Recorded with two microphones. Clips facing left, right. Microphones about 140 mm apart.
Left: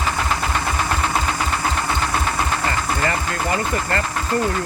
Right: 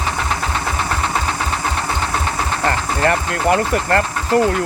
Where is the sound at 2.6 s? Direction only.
65° right (ahead or behind).